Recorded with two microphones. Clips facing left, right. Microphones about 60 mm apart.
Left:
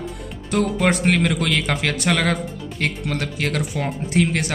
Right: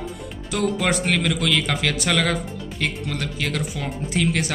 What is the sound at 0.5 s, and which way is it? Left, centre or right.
A man's voice, left.